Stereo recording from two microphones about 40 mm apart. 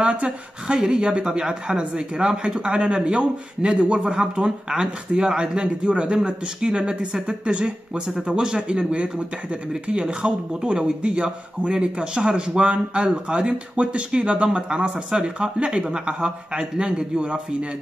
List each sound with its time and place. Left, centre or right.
0.0 s a man's voice: right